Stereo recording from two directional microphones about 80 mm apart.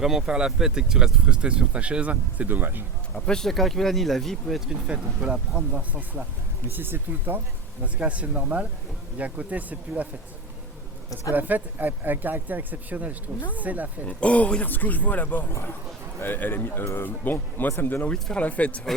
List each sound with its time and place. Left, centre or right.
0.0 s speech: centre; by 2.8 s right
3.2 s speech: centre
4.7 s speech: centre
7.9 s speech: centre
11.3 s speech: right
14.0 s a man's voice: centre; by 17.1 s left
17.1 s a man's voice: left
18.1 s speech: centre